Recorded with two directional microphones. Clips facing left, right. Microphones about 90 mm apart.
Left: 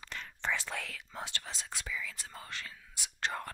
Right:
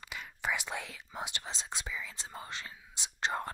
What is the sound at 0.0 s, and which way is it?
Speech, 10° right (ahead or behind).